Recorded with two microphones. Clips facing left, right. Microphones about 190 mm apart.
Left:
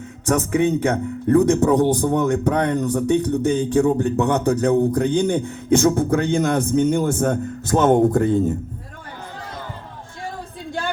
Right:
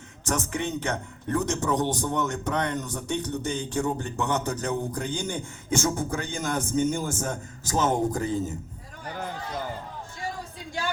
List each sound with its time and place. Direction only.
0.3 s speech: 60° left (ahead or behind)